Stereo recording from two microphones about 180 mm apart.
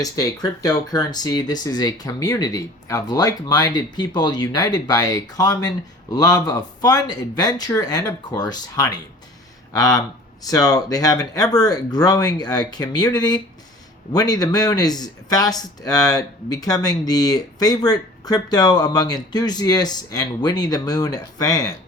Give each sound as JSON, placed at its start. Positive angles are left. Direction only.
{"t": 0.0, "sound": "speech", "side_deg": 20}